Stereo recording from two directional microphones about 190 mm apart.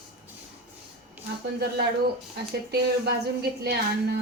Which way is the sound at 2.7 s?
60° right (ahead or behind).